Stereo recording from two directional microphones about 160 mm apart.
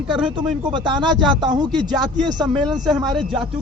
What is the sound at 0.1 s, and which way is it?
Speech, centre (ahead or behind).